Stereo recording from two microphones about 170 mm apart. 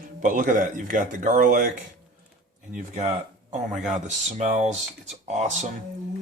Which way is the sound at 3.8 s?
45° right (ahead or behind).